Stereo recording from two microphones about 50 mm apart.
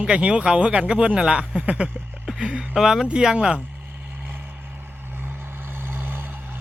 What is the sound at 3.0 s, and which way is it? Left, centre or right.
Speech, centre.